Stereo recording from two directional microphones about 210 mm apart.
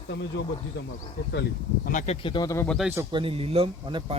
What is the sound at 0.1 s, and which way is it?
Speech, 55° left (ahead or behind).